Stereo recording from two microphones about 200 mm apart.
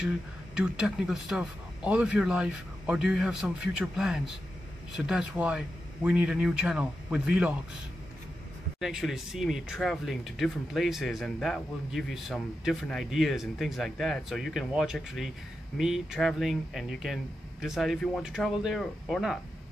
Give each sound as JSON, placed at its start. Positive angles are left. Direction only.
{"t": 0.6, "sound": "speech", "side_deg": -5}
{"t": 8.7, "sound": "speech", "side_deg": 0}